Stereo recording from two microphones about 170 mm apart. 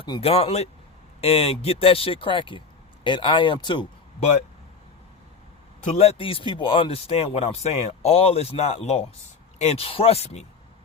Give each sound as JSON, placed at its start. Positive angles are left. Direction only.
{"t": 0.0, "sound": "speech", "side_deg": 35}
{"t": 5.8, "sound": "speech", "side_deg": 40}